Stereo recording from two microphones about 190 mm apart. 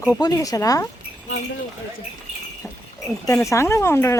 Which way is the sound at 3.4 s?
15° left (ahead or behind).